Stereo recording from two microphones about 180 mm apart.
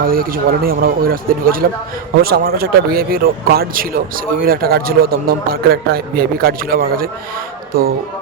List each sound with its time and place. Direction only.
0.0 s a man's voice: 55° right (ahead or behind)